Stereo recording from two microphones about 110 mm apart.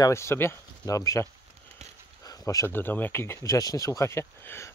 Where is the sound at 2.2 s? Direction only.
35° left (ahead or behind).